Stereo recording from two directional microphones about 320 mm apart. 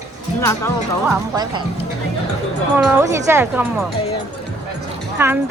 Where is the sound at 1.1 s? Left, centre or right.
Centre.